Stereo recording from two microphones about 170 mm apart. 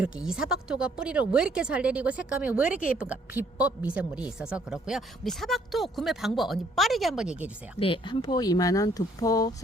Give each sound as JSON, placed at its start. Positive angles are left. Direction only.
{"t": 0.0, "sound": "speech", "side_deg": -5}
{"t": 7.8, "sound": "speech", "side_deg": 30}